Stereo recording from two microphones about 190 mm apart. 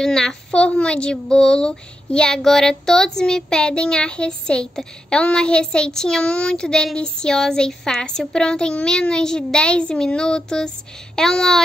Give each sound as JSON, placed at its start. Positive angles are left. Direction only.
{"t": 0.0, "sound": "a child's voice", "side_deg": 5}